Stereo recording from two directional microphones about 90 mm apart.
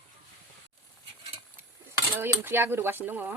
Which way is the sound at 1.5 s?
25° right (ahead or behind).